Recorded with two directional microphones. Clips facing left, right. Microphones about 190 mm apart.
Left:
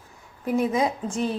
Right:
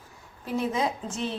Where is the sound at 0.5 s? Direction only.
10° left (ahead or behind).